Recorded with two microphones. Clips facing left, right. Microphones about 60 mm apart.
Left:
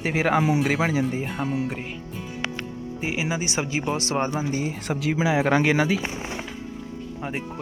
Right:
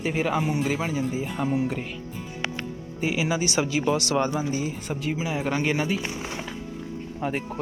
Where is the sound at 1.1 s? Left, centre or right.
Left.